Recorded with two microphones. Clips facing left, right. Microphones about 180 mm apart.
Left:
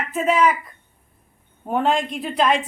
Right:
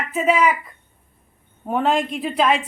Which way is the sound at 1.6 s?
Centre (ahead or behind).